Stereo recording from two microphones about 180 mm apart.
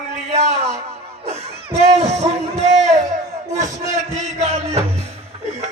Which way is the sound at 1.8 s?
40° right (ahead or behind).